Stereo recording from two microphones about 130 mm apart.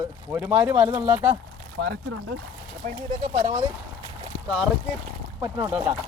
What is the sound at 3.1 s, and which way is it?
Speech, 55° right (ahead or behind).